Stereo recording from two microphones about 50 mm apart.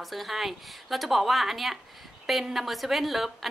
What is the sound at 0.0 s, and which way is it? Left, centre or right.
A woman's voice, centre.